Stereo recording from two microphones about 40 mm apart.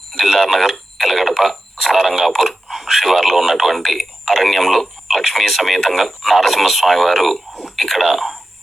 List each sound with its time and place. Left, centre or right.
0.3 s speech: centre
7.8 s a sound: centre
8.0 s speech: centre